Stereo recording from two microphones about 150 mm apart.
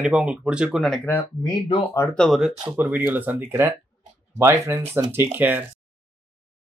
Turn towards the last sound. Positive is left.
turn(degrees=-10)  # may be behind; listen again after turning